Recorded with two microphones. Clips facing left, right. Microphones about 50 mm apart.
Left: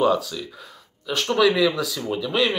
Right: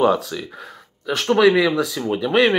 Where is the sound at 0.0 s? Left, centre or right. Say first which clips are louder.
Right 3 dB; right.